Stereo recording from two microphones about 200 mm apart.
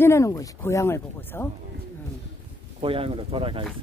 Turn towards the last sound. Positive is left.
turn(degrees=-25)  # may be behind; listen again after turning